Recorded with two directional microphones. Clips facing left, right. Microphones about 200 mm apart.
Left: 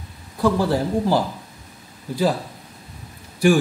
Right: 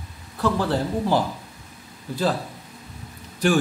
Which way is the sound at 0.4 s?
10° left (ahead or behind).